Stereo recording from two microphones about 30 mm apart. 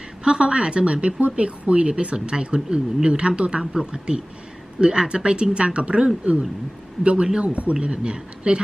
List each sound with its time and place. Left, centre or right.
0.3 s speech: right